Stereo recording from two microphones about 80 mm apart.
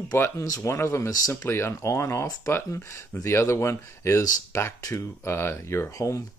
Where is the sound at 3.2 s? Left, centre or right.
Left.